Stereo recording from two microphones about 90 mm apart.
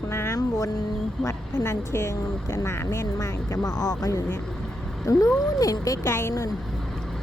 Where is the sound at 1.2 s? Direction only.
35° left (ahead or behind).